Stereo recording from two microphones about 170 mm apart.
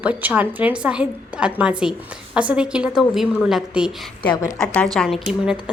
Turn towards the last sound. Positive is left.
turn(degrees=-5)  # may be behind; listen again after turning